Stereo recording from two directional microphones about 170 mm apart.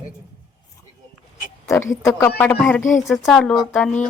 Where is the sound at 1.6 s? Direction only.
15° left (ahead or behind).